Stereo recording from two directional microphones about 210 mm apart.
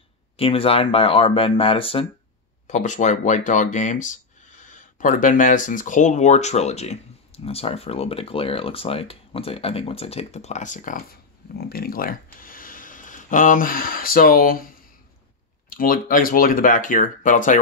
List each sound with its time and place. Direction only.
0.4 s speech: 25° left (ahead or behind); by 14.6 s 40° left (ahead or behind)
15.7 s speech: 40° left (ahead or behind)